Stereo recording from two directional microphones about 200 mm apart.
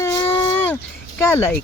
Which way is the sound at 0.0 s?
10° left (ahead or behind).